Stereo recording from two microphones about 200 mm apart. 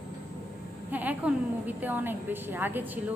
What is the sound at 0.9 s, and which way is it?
A woman's voice, 10° right (ahead or behind).